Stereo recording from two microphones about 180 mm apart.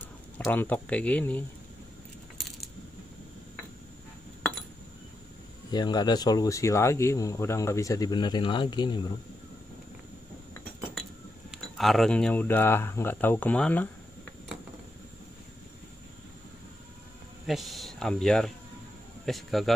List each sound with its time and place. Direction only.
0.4 s speech: 10° left (ahead or behind)
5.7 s speech: 25° left (ahead or behind)
11.5 s speech: centre (ahead or behind)
17.5 s a man's voice: centre (ahead or behind)